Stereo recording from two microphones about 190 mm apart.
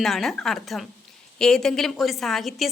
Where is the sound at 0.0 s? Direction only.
Centre (ahead or behind).